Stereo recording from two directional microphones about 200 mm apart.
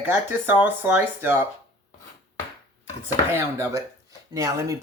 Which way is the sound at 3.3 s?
10° right (ahead or behind).